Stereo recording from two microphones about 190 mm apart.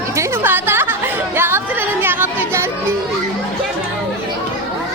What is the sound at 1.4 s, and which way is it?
Music, 10° right (ahead or behind).